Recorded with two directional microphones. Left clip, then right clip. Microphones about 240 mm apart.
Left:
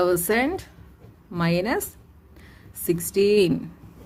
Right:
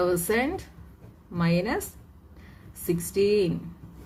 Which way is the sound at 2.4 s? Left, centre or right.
Left.